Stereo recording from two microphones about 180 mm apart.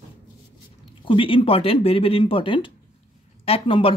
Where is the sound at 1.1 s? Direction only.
30° left (ahead or behind).